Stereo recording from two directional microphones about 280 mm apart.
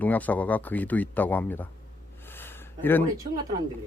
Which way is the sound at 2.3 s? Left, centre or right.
Centre.